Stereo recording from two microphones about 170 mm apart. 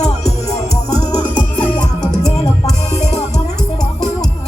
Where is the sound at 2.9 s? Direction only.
40° left (ahead or behind).